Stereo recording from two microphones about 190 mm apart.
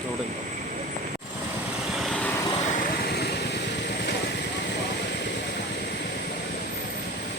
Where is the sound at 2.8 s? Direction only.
55° left (ahead or behind).